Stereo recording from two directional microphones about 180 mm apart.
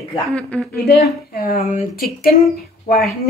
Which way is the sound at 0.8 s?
60° left (ahead or behind).